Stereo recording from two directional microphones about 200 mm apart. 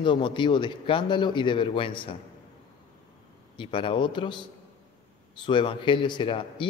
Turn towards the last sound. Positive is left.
turn(degrees=25)  # may be behind; listen again after turning